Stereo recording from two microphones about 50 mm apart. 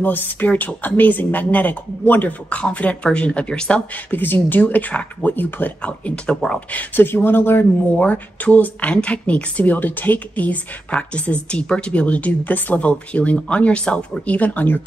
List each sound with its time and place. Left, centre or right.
0.0 s speech: left; by 3.8 s centre
4.1 s speech: left
5.8 s speech: left
6.7 s speech: left
7.9 s speech: left
14.2 s speech: left